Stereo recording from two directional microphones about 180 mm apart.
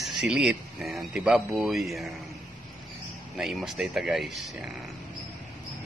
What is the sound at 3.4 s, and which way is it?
Speech, centre (ahead or behind).